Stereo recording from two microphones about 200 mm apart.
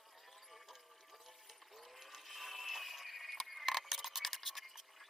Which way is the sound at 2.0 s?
Centre (ahead or behind).